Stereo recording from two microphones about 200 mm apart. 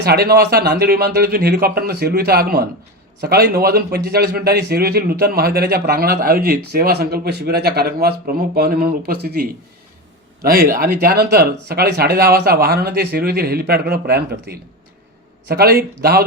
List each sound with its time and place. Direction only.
0.0 s a man's voice: 50° right (ahead or behind)